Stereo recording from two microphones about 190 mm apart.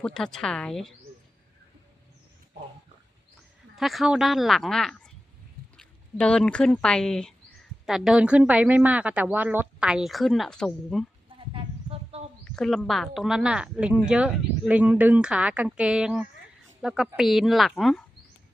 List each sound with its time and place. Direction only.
0.0 s speech: 5° left (ahead or behind)
3.8 s speech: centre (ahead or behind)
11.3 s a sound: 30° right (ahead or behind)
12.5 s speech: centre (ahead or behind)